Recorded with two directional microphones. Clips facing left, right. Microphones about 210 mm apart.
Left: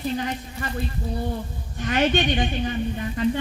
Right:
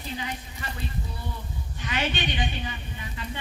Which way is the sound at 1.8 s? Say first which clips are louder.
Left 8 dB; 50° left (ahead or behind).